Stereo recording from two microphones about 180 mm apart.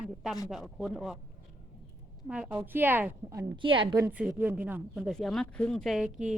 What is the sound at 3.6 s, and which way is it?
Speech, 30° right (ahead or behind).